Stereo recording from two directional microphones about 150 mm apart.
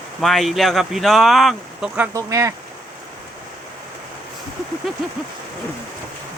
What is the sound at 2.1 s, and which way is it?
Speech, 20° right (ahead or behind).